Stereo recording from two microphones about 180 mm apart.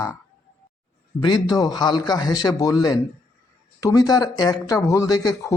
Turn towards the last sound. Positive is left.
turn(degrees=20)  # may be behind; listen again after turning